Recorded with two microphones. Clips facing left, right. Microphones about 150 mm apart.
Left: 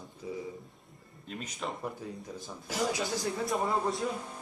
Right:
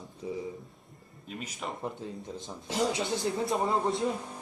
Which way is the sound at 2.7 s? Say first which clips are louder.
Right 2 dB; 25° right (ahead or behind).